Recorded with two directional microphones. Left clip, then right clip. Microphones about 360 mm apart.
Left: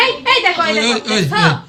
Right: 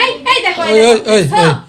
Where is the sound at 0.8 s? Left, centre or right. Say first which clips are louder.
Right 7 dB; centre.